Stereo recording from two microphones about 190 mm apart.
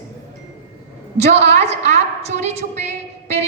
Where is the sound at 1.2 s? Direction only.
35° right (ahead or behind).